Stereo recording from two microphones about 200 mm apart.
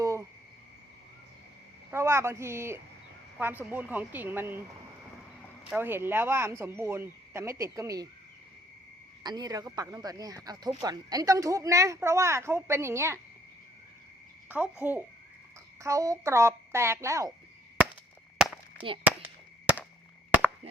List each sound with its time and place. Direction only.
0.0 s cricket: 15° right (ahead or behind)
1.9 s speech: 15° right (ahead or behind)
5.7 s speech: 10° right (ahead or behind)
9.2 s speech: 20° right (ahead or behind)
14.5 s speech: 10° right (ahead or behind)
18.3 s a sound: centre (ahead or behind)
20.3 s chop: 10° right (ahead or behind)